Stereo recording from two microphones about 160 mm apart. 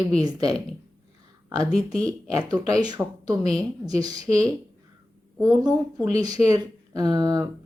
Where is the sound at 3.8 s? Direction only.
25° right (ahead or behind).